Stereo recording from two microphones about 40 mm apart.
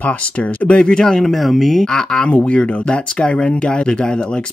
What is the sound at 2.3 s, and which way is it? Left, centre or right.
Speech, left.